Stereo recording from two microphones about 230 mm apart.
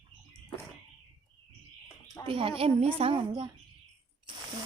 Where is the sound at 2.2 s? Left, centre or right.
Right.